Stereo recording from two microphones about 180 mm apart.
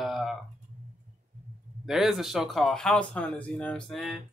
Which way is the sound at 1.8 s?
Centre (ahead or behind).